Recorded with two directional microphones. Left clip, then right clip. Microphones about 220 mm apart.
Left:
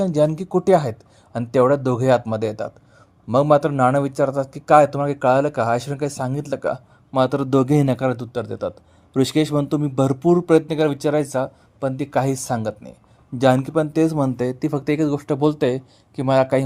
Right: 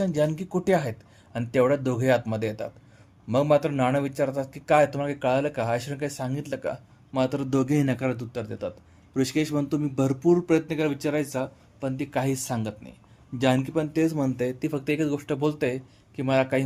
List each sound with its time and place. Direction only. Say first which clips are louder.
0.0 s speech: left 7 dB; 25° left (ahead or behind)